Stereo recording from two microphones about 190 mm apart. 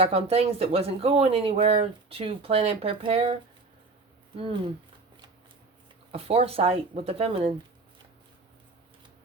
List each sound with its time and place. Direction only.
0.0 s speech: 30° right (ahead or behind)
4.4 s speech: 30° right (ahead or behind)
6.1 s speech: 30° right (ahead or behind)